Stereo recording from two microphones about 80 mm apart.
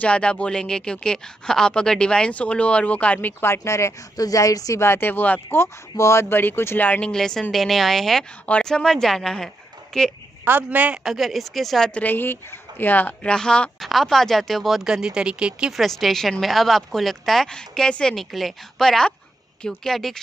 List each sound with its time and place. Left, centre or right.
0.0 s speech: centre; by 4.8 s left
4.8 s speech: left
5.6 s speech: left
6.9 s a woman's voice: centre
10.4 s a woman's voice: right
11.1 s speech: centre
11.9 s speech: left; by 15.7 s centre
15.7 s speech: centre